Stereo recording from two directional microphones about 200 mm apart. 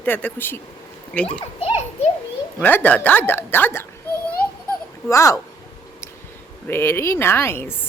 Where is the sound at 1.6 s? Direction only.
30° left (ahead or behind).